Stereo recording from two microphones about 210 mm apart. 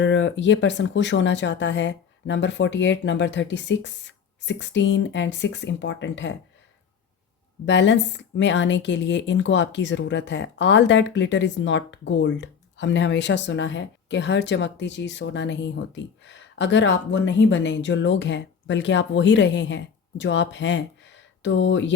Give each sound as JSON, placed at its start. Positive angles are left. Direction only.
{"t": 0.0, "sound": "speech", "side_deg": 60}
{"t": 7.6, "sound": "speech", "side_deg": 60}